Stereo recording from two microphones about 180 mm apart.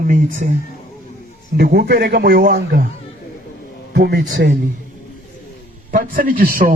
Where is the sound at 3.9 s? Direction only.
65° right (ahead or behind).